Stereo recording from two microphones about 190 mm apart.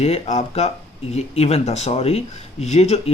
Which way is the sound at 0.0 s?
35° left (ahead or behind).